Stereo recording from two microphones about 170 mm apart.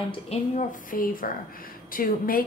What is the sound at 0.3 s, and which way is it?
A woman's voice, 50° left (ahead or behind).